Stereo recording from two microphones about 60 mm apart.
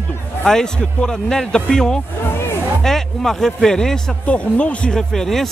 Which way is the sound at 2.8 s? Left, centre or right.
Centre.